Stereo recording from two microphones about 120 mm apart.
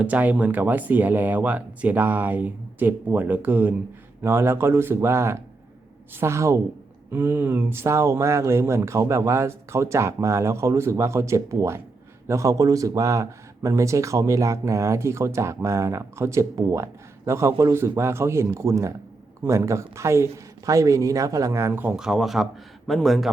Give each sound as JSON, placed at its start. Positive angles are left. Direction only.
{"t": 0.0, "sound": "a man's voice", "side_deg": -15}
{"t": 21.9, "sound": "speech", "side_deg": -5}